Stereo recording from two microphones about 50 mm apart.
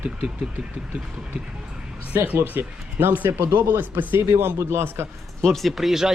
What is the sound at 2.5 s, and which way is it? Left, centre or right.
Speech, right.